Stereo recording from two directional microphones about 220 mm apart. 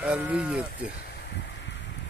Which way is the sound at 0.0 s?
5° right (ahead or behind).